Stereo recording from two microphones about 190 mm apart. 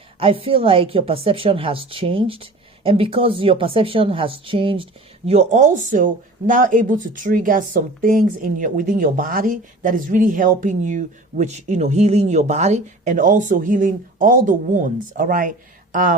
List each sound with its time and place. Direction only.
0.2 s a woman's voice: 30° right (ahead or behind)